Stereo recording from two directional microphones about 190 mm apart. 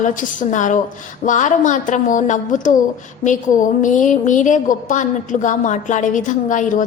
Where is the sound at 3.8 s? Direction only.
40° left (ahead or behind).